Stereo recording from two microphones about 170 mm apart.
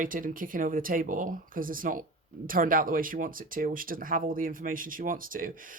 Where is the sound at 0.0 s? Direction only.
55° right (ahead or behind).